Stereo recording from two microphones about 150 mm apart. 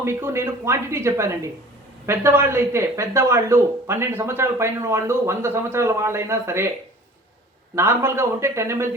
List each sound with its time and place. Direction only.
0.0 s speech: 15° right (ahead or behind)
7.8 s speech: 15° right (ahead or behind)